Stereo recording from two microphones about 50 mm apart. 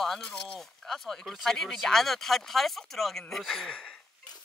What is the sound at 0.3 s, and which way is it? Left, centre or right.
Speech, centre.